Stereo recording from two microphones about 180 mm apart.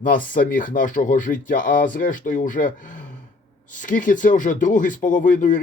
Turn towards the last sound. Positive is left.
turn(degrees=45)  # may be behind; listen again after turning